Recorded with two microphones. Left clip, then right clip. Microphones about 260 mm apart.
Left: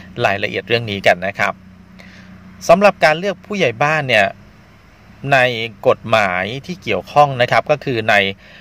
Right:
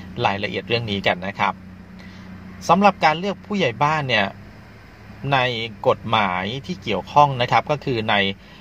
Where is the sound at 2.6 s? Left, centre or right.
Left.